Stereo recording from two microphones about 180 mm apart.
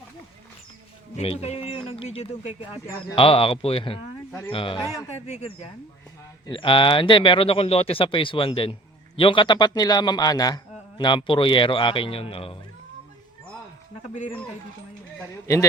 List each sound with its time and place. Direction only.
1.1 s a man's voice: 35° left (ahead or behind); by 5.0 s 20° left (ahead or behind)
5.2 s speech: 40° left (ahead or behind)
6.5 s a man's voice: 30° left (ahead or behind)